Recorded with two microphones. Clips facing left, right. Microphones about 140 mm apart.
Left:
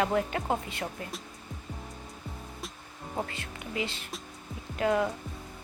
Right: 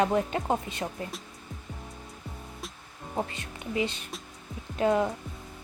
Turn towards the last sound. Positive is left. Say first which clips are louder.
# right 2 dB
turn(degrees=-25)  # may be behind; listen again after turning